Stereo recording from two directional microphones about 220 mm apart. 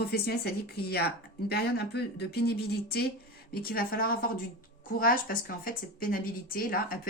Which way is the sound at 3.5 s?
40° left (ahead or behind).